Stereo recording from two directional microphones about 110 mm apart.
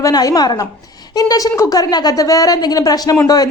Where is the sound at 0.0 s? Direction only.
35° left (ahead or behind).